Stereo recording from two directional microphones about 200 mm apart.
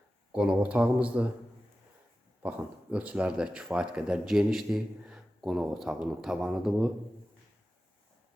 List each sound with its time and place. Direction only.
0.3 s speech: 5° right (ahead or behind)
2.4 s speech: 5° right (ahead or behind)